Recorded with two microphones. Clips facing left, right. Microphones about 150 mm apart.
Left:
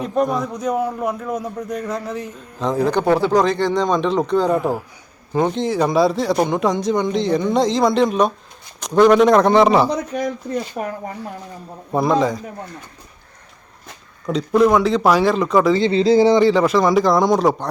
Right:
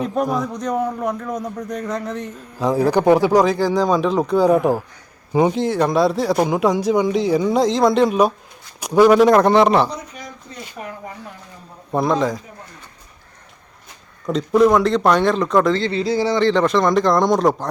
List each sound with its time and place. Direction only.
0.0 s speech: centre (ahead or behind)
2.6 s speech: 10° right (ahead or behind)
9.9 s speech: 80° left
10.5 s speech: 45° left (ahead or behind)
11.9 s speech: centre (ahead or behind)
14.3 s speech: centre (ahead or behind)
15.8 s speech: 25° left (ahead or behind)
16.4 s speech: 5° left (ahead or behind)